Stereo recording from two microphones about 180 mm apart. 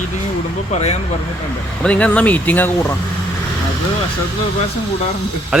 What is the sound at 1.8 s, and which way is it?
Speech, 5° left (ahead or behind).